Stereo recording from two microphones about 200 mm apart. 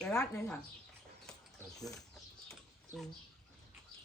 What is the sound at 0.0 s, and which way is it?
Speech, centre (ahead or behind).